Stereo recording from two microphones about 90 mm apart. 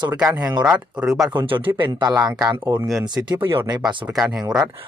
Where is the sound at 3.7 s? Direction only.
50° right (ahead or behind).